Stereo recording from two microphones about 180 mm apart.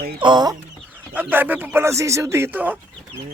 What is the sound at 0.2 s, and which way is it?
Speech, 25° right (ahead or behind).